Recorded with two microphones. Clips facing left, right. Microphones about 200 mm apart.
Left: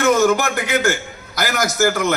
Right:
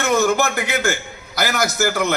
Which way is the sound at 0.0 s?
45° left (ahead or behind).